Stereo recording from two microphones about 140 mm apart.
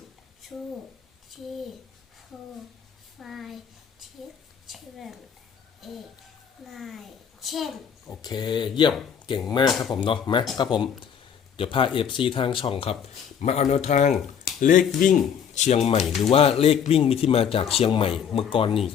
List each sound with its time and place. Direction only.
3.2 s a woman's voice: centre (ahead or behind)
4.6 s a woman's voice: centre (ahead or behind)
8.2 s speech: 30° left (ahead or behind)
9.6 s a woman's voice: centre (ahead or behind)
9.9 s speech: 35° left (ahead or behind)
11.5 s speech: 40° left (ahead or behind)
13.4 s speech: 55° left (ahead or behind); by 15.2 s 70° left (ahead or behind)
15.5 s speech: 50° left (ahead or behind)